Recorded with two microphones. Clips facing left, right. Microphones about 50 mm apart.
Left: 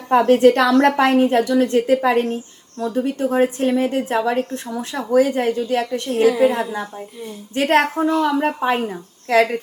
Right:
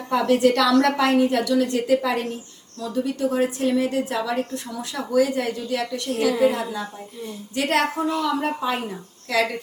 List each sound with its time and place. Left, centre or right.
0.1 s a woman's voice: left